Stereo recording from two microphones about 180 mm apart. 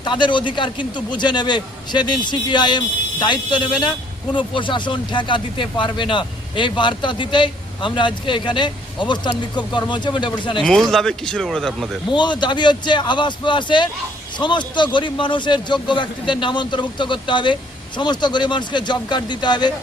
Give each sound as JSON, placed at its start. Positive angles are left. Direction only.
{"t": 0.0, "sound": "speech", "side_deg": 25}
{"t": 10.6, "sound": "speech", "side_deg": 0}
{"t": 12.1, "sound": "speech", "side_deg": 25}